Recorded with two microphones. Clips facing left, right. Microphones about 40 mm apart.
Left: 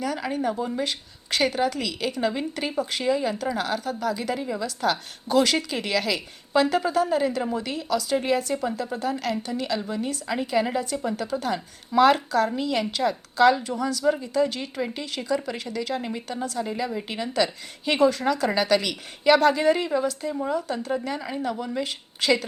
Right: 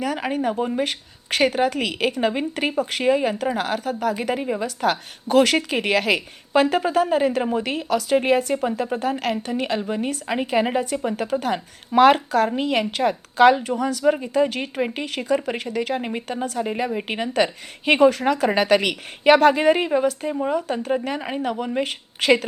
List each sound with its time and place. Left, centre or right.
0.0 s a woman's voice: right